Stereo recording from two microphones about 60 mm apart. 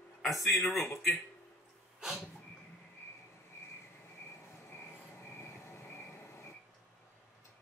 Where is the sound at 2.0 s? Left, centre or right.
Centre.